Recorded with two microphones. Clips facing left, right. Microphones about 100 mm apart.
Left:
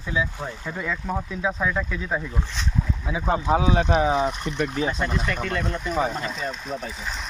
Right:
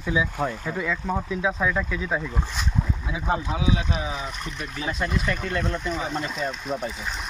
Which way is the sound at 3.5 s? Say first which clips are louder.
Left 6 dB; 45° left (ahead or behind).